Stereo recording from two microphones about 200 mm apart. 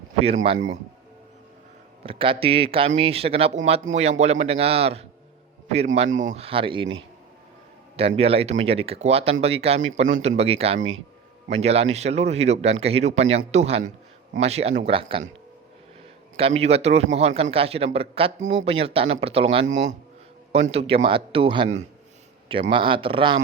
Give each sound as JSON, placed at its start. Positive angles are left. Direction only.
{"t": 0.2, "sound": "speech", "side_deg": -30}
{"t": 2.0, "sound": "speech", "side_deg": -25}
{"t": 7.9, "sound": "speech", "side_deg": -30}
{"t": 16.4, "sound": "speech", "side_deg": -30}